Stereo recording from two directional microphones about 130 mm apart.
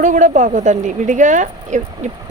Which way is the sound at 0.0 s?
75° right (ahead or behind).